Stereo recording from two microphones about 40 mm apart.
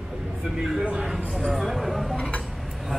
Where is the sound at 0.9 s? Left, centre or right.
Centre.